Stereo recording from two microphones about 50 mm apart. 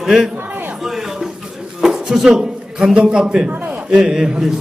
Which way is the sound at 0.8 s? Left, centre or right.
Centre.